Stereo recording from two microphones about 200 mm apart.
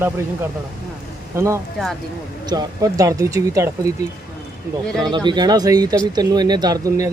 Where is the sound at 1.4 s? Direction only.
15° right (ahead or behind).